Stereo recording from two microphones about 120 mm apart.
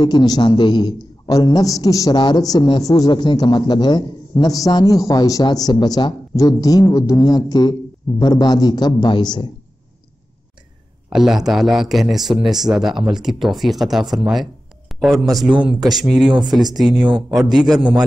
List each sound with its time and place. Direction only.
0.0 s a man's voice: 35° left (ahead or behind)
11.1 s a man's voice: 5° right (ahead or behind)
16.3 s speech: 35° right (ahead or behind)
16.7 s speech: centre (ahead or behind)